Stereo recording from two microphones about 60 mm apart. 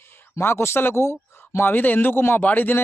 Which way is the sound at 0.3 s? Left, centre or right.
Left.